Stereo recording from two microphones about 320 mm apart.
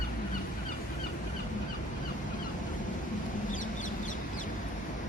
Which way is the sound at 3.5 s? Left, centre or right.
Left.